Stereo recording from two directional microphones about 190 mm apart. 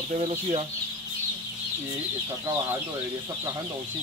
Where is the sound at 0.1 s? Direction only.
30° right (ahead or behind).